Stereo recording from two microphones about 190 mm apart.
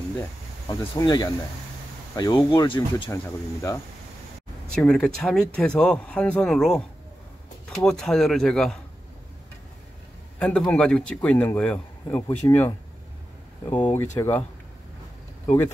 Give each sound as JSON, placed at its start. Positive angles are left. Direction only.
{"t": 0.7, "sound": "speech", "side_deg": 20}
{"t": 4.7, "sound": "speech", "side_deg": 5}
{"t": 7.8, "sound": "speech", "side_deg": 5}
{"t": 10.4, "sound": "a man's voice", "side_deg": 5}
{"t": 13.7, "sound": "a man's voice", "side_deg": 10}